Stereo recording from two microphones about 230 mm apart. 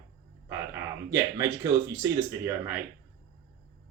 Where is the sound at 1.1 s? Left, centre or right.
Centre.